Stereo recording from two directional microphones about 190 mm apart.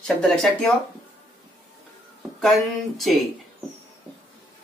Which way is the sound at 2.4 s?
Centre (ahead or behind).